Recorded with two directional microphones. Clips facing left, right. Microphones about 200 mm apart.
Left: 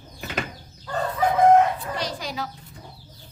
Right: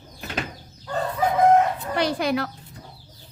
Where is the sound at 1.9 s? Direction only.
60° right (ahead or behind).